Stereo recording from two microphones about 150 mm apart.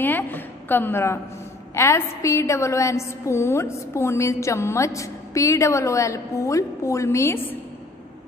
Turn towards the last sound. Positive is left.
turn(degrees=15)  # may be behind; listen again after turning